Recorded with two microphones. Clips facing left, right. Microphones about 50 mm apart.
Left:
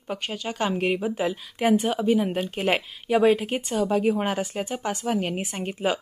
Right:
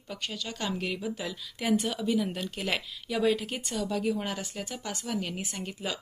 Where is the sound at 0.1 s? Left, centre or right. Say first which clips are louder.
Left 6 dB; left.